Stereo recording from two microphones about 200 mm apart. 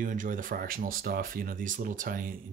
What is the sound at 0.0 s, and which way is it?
Speech, 40° right (ahead or behind).